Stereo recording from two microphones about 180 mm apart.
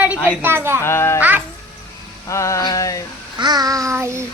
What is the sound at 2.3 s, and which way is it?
Speech, 15° left (ahead or behind).